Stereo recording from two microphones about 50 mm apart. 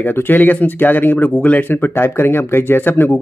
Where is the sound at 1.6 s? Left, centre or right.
Left.